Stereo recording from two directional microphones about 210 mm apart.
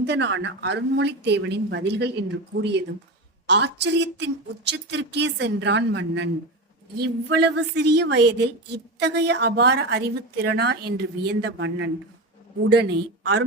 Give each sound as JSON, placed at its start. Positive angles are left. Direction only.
{"t": 0.0, "sound": "a woman's voice", "side_deg": -60}